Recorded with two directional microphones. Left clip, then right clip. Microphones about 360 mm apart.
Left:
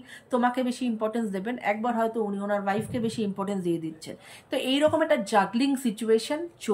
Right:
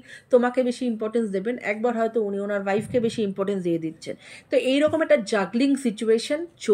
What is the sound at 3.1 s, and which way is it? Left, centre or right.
Speech, left.